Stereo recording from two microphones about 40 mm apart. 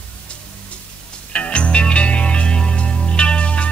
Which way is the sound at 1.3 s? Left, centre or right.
Left.